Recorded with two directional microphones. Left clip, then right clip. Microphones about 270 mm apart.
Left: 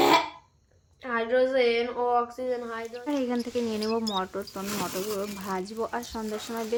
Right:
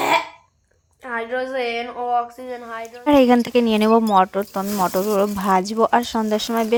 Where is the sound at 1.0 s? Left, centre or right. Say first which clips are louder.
Even; right.